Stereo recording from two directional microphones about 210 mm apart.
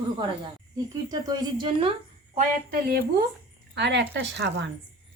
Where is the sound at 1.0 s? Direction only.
20° right (ahead or behind).